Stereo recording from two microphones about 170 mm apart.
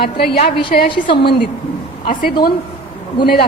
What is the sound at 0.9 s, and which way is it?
Speech, 30° left (ahead or behind).